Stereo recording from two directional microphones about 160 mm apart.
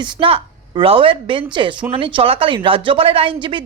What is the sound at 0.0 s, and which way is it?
A woman's voice, 35° right (ahead or behind).